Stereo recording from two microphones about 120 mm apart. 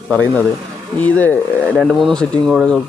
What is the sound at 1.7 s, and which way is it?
Speech, 5° right (ahead or behind).